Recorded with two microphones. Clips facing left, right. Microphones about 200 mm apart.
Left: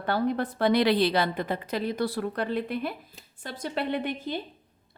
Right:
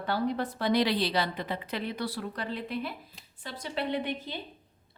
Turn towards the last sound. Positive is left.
turn(degrees=50)  # may be behind; listen again after turning